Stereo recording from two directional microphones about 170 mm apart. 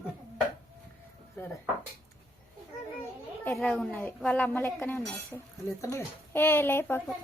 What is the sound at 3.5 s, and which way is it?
Speech, 5° left (ahead or behind).